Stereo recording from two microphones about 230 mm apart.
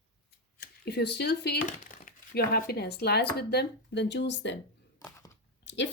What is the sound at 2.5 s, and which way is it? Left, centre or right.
Speech, left.